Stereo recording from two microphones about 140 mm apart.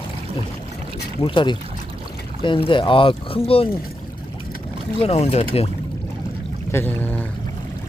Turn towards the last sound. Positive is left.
turn(degrees=10)  # may be behind; listen again after turning